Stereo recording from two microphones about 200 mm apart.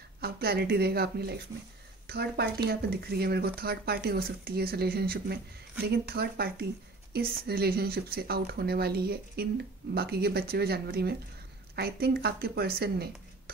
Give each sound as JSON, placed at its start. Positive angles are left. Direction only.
{"t": 0.2, "sound": "speech", "side_deg": -50}